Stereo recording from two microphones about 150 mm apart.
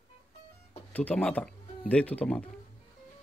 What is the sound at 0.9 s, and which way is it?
A man's voice, 10° left (ahead or behind).